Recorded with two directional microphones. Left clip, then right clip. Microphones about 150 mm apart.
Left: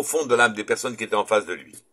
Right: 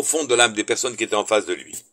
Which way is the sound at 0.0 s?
30° right (ahead or behind).